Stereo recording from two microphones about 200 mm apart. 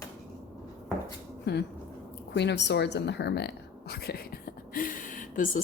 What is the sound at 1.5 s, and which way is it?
A woman's voice, 55° left (ahead or behind).